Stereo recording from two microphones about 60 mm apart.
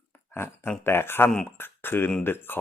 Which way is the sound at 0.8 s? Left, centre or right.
Left.